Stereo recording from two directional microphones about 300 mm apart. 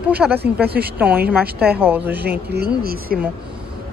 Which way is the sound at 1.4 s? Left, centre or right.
Right.